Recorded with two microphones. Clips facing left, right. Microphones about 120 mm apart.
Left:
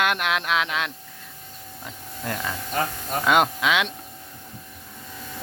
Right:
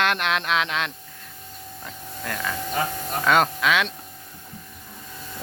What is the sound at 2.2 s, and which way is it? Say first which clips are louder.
Speech: even; 20° left (ahead or behind).